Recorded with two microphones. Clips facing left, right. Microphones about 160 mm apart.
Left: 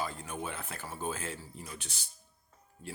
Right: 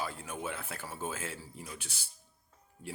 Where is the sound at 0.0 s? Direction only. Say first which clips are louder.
Left 1 dB; 5° right (ahead or behind).